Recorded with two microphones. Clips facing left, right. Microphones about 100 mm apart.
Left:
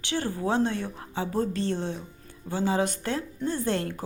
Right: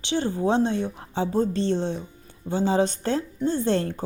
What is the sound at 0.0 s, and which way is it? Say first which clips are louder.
A woman's voice: right 5 dB; 20° right (ahead or behind).